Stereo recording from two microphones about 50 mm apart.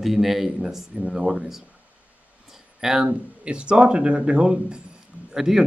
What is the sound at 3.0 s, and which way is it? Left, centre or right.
Speech, right.